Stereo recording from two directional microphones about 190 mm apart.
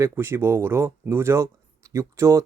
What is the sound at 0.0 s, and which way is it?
Speech, 15° right (ahead or behind).